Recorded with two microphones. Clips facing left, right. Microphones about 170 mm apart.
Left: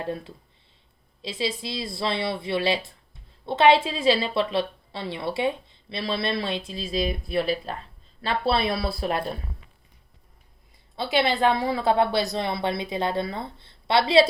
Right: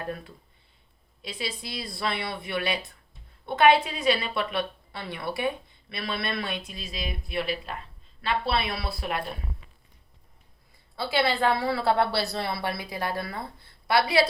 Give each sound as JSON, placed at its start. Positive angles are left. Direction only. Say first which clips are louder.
{"t": 0.0, "sound": "a woman's voice", "louder": "left 4 dB", "side_deg": 25}
{"t": 10.9, "sound": "a woman's voice", "louder": "left 2 dB", "side_deg": 20}